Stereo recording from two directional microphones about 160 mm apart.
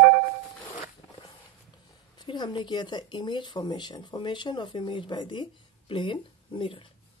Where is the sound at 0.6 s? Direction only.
25° left (ahead or behind).